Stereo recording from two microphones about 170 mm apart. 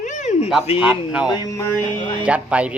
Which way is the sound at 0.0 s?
45° left (ahead or behind).